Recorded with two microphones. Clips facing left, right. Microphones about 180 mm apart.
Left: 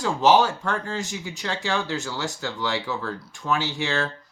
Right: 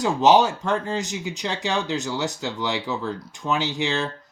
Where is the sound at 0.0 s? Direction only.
20° right (ahead or behind).